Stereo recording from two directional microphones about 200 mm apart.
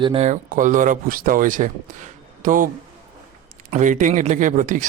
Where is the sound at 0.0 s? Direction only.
30° right (ahead or behind).